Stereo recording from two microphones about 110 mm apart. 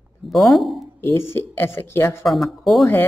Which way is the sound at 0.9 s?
20° left (ahead or behind).